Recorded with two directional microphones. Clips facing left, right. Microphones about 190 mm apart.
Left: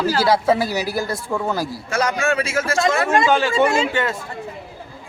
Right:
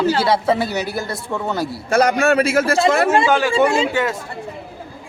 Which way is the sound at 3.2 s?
10° right (ahead or behind).